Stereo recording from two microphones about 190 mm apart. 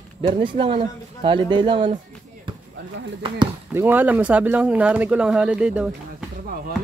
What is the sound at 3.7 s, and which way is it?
Speech, 10° right (ahead or behind).